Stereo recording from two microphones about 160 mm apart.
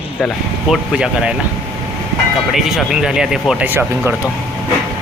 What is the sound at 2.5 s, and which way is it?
Speech, centre (ahead or behind).